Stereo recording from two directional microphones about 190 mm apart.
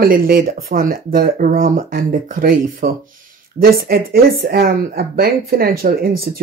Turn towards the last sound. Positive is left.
turn(degrees=-50)  # may be behind; listen again after turning